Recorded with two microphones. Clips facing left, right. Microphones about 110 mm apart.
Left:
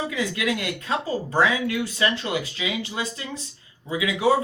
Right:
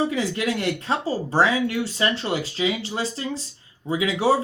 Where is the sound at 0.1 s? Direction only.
35° right (ahead or behind).